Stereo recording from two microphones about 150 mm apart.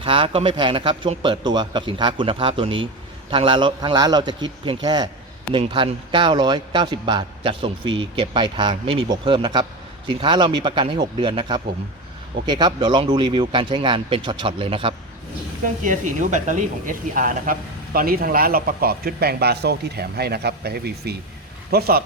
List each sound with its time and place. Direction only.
0.0 s a man's voice: 35° right (ahead or behind)
15.8 s speech: 55° right (ahead or behind); by 22.0 s 90° right